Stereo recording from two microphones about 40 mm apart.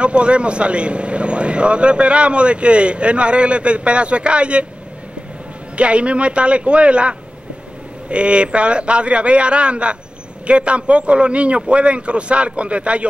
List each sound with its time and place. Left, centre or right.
0.0 s speech: right
5.8 s speech: right